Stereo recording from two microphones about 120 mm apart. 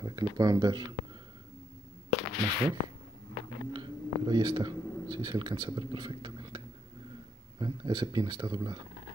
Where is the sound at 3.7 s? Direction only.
35° right (ahead or behind).